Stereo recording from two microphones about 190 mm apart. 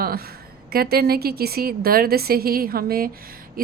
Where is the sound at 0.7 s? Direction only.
55° right (ahead or behind).